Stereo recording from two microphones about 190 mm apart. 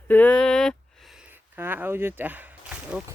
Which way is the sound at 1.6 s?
10° right (ahead or behind).